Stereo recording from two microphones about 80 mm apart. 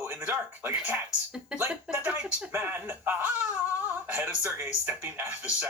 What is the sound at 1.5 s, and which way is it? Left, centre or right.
Speech, right.